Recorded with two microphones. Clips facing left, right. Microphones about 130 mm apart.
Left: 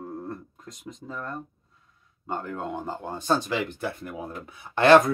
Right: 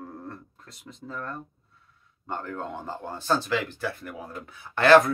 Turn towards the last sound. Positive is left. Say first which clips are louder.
# left 1 dB
turn(degrees=20)  # may be behind; listen again after turning